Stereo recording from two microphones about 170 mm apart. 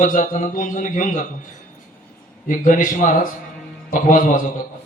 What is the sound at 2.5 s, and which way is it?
Speech, 50° left (ahead or behind).